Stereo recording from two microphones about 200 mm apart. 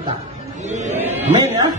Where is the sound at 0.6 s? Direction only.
35° right (ahead or behind).